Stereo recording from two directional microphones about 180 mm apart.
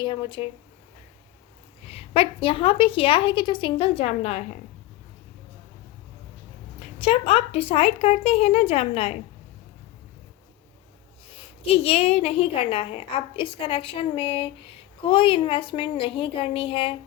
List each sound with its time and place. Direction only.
0.0 s a woman's voice: 25° left (ahead or behind)
1.9 s a woman's voice: 30° left (ahead or behind)
7.0 s a woman's voice: 30° left (ahead or behind)
11.7 s a woman's voice: 35° left (ahead or behind)